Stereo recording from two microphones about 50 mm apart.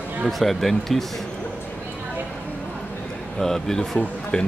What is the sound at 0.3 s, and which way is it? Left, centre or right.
Speech, centre.